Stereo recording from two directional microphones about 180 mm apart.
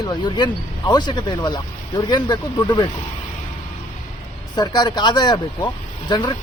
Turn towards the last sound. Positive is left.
turn(degrees=25)  # may be behind; listen again after turning